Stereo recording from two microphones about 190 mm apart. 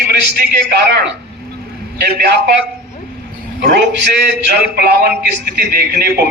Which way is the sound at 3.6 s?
65° right (ahead or behind).